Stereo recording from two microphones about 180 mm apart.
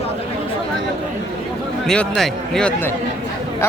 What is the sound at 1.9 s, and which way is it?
Speech, 5° left (ahead or behind).